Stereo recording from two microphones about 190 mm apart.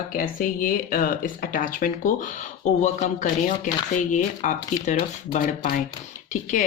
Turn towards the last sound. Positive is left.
turn(degrees=40)  # may be behind; listen again after turning